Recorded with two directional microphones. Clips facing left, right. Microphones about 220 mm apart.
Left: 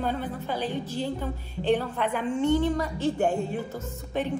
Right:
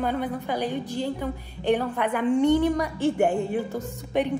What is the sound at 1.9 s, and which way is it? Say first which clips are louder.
Speech: right 2 dB; 55° right (ahead or behind).